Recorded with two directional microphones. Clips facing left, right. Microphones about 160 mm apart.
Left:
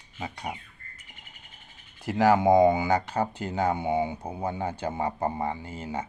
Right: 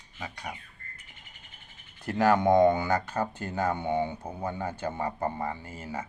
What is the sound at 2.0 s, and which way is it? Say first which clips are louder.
Speech: left 2 dB; 10° left (ahead or behind).